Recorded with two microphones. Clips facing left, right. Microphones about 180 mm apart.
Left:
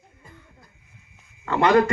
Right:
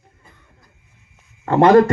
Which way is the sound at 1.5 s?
45° right (ahead or behind).